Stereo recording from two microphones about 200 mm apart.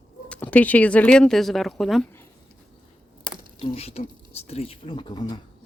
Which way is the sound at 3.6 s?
30° left (ahead or behind).